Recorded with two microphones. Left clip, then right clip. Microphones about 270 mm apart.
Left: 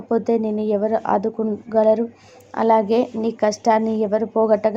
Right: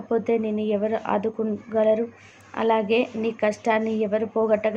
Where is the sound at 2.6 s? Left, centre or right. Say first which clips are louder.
Left 5 dB; centre.